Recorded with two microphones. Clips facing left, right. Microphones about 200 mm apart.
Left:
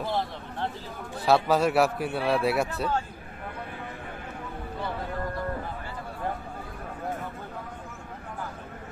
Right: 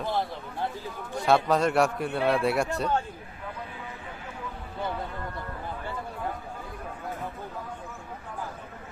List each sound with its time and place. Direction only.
1.1 s a man's voice: 5° left (ahead or behind)